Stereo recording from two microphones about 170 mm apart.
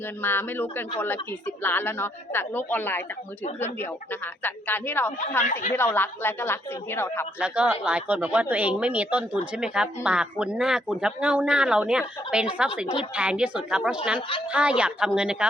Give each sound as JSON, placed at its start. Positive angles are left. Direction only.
{"t": 0.2, "sound": "speech", "side_deg": 10}
{"t": 5.4, "sound": "speech", "side_deg": 50}
{"t": 5.7, "sound": "speech", "side_deg": 10}
{"t": 7.3, "sound": "speech", "side_deg": -5}